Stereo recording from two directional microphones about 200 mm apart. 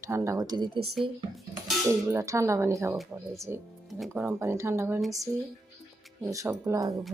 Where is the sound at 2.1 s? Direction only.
15° right (ahead or behind).